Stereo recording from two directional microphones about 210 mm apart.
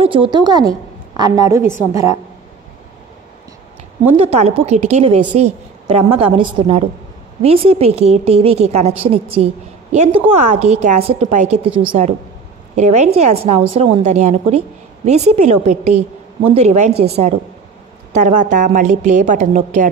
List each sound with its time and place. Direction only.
0.0 s a woman's voice: 25° right (ahead or behind)
4.1 s a woman's voice: 30° right (ahead or behind)